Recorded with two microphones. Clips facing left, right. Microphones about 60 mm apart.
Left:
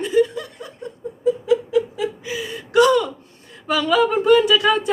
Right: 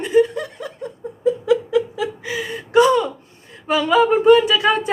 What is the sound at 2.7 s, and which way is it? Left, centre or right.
Speech, right.